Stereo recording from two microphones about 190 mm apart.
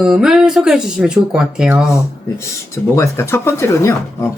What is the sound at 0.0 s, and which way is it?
Speech, centre (ahead or behind).